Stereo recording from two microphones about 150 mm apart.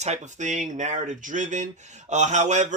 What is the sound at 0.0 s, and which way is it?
Speech, 50° right (ahead or behind).